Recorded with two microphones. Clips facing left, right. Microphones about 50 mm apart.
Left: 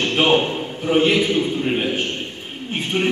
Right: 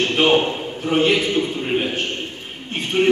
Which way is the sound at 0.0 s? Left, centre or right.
Centre.